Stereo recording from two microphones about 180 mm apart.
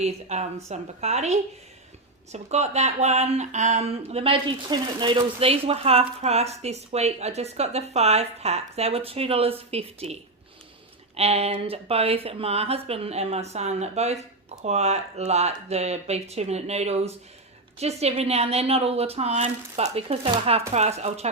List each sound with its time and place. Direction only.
0.0 s speech: 40° right (ahead or behind)
11.2 s speech: 35° right (ahead or behind)